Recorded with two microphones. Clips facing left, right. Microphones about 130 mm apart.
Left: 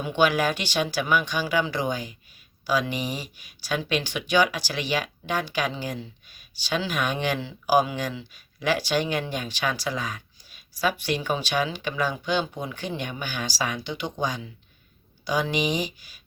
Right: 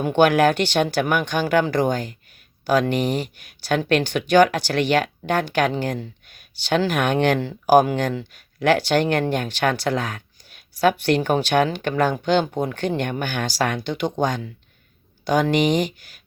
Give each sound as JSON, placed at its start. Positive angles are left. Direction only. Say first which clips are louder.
{"t": 0.0, "sound": "speech", "louder": "right 6 dB", "side_deg": -55}